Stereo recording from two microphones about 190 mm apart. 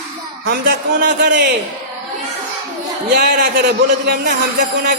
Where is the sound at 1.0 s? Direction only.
65° right (ahead or behind).